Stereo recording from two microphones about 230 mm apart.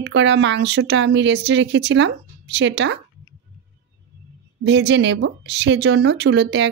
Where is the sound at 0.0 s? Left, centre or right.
Right.